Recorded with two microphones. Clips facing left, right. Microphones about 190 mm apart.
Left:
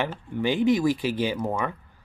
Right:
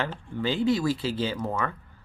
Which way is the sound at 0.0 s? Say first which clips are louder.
Left 3 dB; 15° left (ahead or behind).